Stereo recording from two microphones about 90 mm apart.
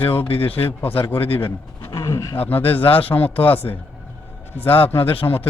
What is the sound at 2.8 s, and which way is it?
Speech, 90° left.